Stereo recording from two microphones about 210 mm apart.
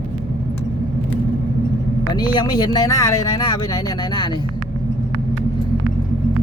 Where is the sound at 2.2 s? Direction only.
20° left (ahead or behind).